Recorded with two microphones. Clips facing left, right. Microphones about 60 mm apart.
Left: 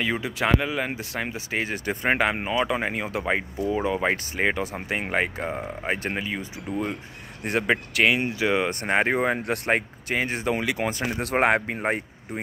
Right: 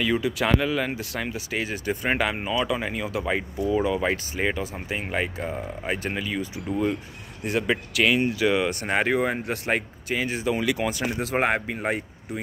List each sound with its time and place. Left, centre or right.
0.0 s speech: left
5.6 s speech: left
11.2 s speech: left
11.7 s speech: left